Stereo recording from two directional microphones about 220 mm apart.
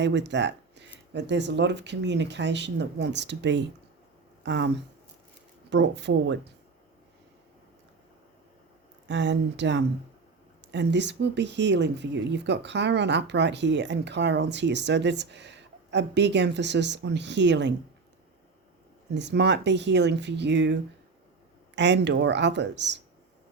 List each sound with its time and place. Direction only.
0.0 s speech: 55° right (ahead or behind)
5.7 s speech: 50° right (ahead or behind)
9.0 s speech: 55° right (ahead or behind)
19.1 s speech: 50° right (ahead or behind)
21.8 s speech: 50° right (ahead or behind)